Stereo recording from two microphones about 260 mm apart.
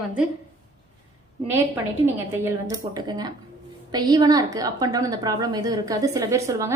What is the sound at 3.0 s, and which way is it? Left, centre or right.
A woman's voice, centre.